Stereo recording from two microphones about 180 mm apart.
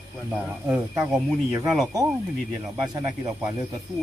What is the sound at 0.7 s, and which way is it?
Speech, 10° right (ahead or behind).